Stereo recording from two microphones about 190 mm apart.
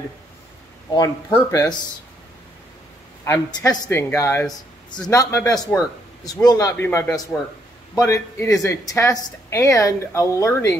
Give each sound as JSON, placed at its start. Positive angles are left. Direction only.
{"t": 0.9, "sound": "a woman's voice", "side_deg": 15}
{"t": 3.3, "sound": "a woman's voice", "side_deg": 20}